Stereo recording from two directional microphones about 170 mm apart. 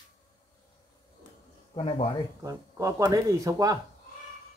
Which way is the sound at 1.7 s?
35° left (ahead or behind).